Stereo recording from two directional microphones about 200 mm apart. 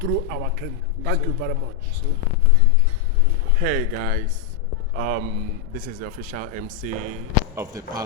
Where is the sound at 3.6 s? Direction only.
45° right (ahead or behind).